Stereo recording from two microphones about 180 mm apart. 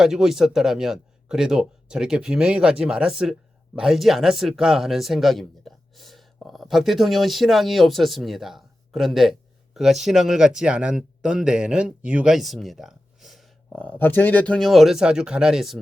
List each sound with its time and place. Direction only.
0.0 s speech: centre (ahead or behind)